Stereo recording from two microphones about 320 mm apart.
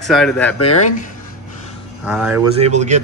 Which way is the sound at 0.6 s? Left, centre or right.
Left.